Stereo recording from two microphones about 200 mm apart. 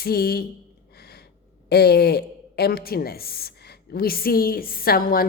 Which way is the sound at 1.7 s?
55° left (ahead or behind).